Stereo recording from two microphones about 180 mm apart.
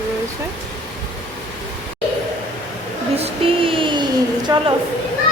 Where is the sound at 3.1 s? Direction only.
30° right (ahead or behind).